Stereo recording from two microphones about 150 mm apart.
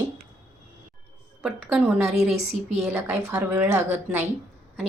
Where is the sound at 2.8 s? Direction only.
15° right (ahead or behind).